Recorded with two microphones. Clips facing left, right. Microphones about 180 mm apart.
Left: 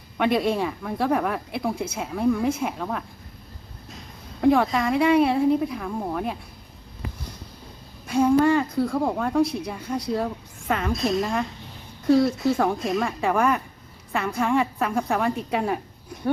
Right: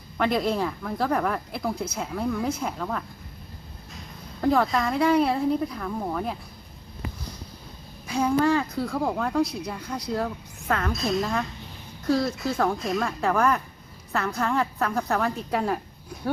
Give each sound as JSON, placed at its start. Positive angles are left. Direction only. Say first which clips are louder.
{"t": 0.2, "sound": "speech", "louder": "left 2 dB", "side_deg": 0}
{"t": 1.7, "sound": "speech", "louder": "left 2 dB", "side_deg": 25}
{"t": 2.0, "sound": "a woman's voice", "louder": "left 7 dB", "side_deg": 10}
{"t": 4.4, "sound": "speech", "louder": "left 3 dB", "side_deg": 5}
{"t": 8.0, "sound": "a woman's voice", "louder": "left 4 dB", "side_deg": 5}